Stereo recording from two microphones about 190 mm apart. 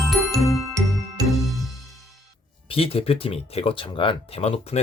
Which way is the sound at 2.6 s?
30° left (ahead or behind).